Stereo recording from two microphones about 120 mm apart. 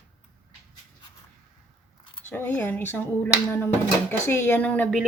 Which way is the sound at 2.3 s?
15° left (ahead or behind).